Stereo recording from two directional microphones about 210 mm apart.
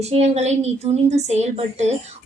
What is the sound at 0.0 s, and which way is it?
A woman's voice, 30° right (ahead or behind).